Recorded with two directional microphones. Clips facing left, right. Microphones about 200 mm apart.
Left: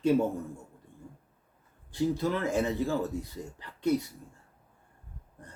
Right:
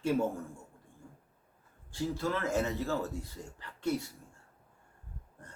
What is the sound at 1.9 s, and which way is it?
A man's voice, 15° left (ahead or behind).